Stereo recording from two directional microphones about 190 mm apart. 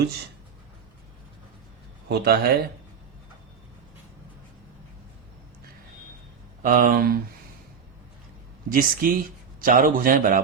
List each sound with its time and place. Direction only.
2.0 s speech: 55° right (ahead or behind)
6.6 s a man's voice: 45° right (ahead or behind)
8.7 s a man's voice: 50° right (ahead or behind)